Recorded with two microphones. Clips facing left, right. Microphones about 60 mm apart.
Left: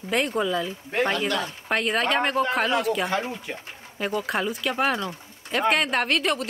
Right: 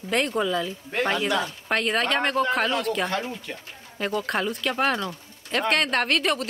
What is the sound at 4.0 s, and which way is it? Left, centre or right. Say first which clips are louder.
Speech: even; centre.